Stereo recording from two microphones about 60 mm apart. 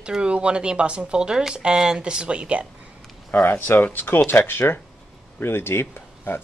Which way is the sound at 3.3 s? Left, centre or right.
Left.